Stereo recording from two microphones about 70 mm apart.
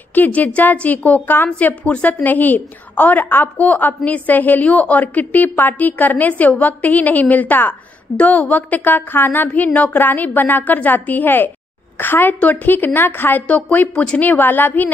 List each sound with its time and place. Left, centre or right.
0.1 s a woman's voice: left